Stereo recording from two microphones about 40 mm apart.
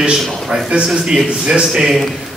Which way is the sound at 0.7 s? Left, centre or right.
Right.